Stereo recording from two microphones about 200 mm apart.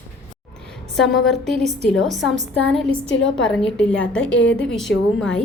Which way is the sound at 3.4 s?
5° left (ahead or behind).